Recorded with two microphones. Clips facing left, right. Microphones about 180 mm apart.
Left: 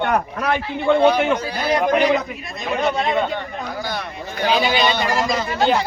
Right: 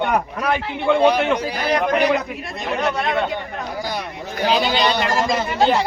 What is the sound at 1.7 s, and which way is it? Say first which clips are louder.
A man's voice: left 1 dB; 15° left (ahead or behind).